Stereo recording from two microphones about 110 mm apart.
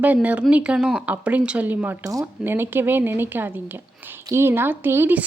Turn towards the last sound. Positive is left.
turn(degrees=-20)  # may be behind; listen again after turning